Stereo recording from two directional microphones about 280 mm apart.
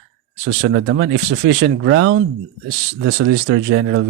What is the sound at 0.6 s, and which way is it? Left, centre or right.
Speech, right.